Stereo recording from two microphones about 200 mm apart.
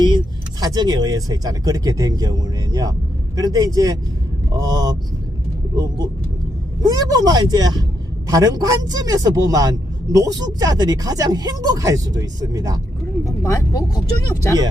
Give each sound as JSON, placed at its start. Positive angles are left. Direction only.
{"t": 0.6, "sound": "speech", "side_deg": -20}
{"t": 3.3, "sound": "speech", "side_deg": -20}
{"t": 13.2, "sound": "speech", "side_deg": 15}